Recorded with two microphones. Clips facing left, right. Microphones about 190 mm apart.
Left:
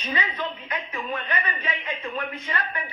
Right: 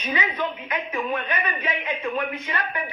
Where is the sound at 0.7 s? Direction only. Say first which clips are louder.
Right 4 dB; 55° right (ahead or behind).